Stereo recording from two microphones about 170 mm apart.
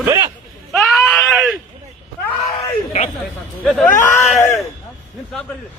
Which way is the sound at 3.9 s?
50° left (ahead or behind).